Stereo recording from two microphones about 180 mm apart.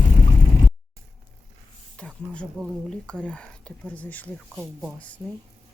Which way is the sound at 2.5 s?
Centre (ahead or behind).